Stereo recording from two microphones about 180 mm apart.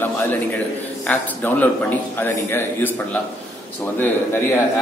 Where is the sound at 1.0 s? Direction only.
10° left (ahead or behind).